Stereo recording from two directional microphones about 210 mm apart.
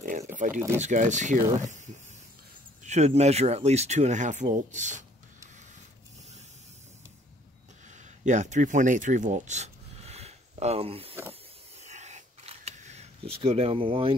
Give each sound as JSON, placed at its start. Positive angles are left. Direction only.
{"t": 0.3, "sound": "speech", "side_deg": -35}
{"t": 2.8, "sound": "speech", "side_deg": -35}
{"t": 8.3, "sound": "speech", "side_deg": -35}
{"t": 11.8, "sound": "camera", "side_deg": -35}